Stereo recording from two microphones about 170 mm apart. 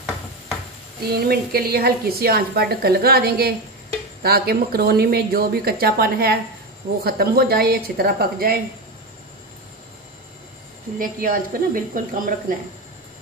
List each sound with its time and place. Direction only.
1.0 s a woman's voice: 65° right (ahead or behind)
11.0 s speech: 55° right (ahead or behind)